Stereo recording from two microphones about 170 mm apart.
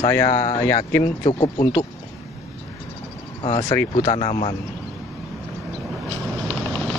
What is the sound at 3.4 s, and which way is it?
Speech, 40° left (ahead or behind).